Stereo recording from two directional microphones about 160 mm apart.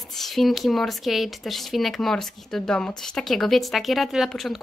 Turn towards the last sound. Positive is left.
turn(degrees=0)  # may be behind; listen again after turning